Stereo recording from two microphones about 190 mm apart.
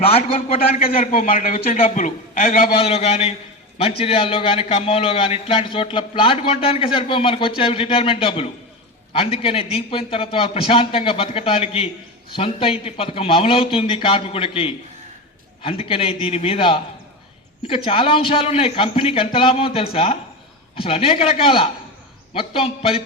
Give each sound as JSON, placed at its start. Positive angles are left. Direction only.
{"t": 0.0, "sound": "a man's voice", "side_deg": 30}
{"t": 0.8, "sound": "a man's voice", "side_deg": 50}
{"t": 2.7, "sound": "a man's voice", "side_deg": 30}
{"t": 17.8, "sound": "a man's voice", "side_deg": 30}